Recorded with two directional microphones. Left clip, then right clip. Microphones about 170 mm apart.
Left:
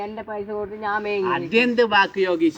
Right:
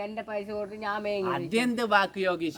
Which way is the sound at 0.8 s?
35° right (ahead or behind).